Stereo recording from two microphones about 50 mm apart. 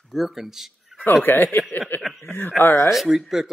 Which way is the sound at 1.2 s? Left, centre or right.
Left.